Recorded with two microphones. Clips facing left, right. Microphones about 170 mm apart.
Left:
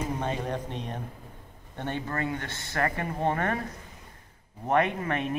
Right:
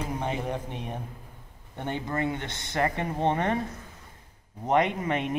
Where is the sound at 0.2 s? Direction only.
15° right (ahead or behind).